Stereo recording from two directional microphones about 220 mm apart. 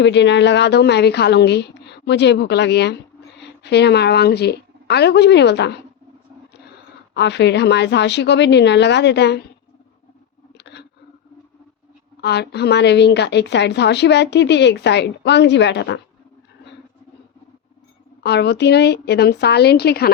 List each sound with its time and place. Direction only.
0.0 s a woman's voice: 55° left (ahead or behind)
7.1 s a woman's voice: 50° left (ahead or behind)
10.6 s a sound: 50° left (ahead or behind)
12.2 s a woman's voice: 50° left (ahead or behind)
18.2 s a woman's voice: 50° left (ahead or behind)